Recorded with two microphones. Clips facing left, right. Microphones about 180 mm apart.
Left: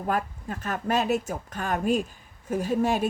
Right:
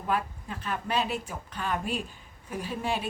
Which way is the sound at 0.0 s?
45° left (ahead or behind).